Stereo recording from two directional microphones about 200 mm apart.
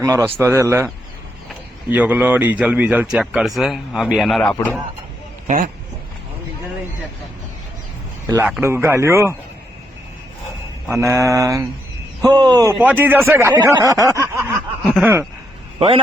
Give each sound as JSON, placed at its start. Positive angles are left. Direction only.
{"t": 0.0, "sound": "a man's voice", "side_deg": -15}
{"t": 1.9, "sound": "speech", "side_deg": -10}
{"t": 8.3, "sound": "a man's voice", "side_deg": -10}
{"t": 10.8, "sound": "a man's voice", "side_deg": -15}
{"t": 14.8, "sound": "a sound", "side_deg": 0}